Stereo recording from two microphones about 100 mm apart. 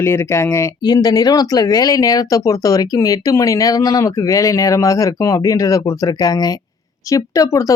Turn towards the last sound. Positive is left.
turn(degrees=35)  # may be behind; listen again after turning